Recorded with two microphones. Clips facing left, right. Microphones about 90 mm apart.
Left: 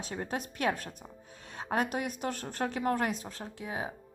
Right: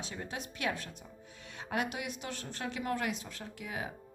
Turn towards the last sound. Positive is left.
turn(degrees=30)  # may be behind; listen again after turning